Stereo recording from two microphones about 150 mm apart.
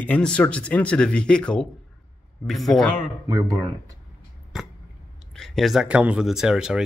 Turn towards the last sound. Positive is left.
turn(degrees=-5)  # may be behind; listen again after turning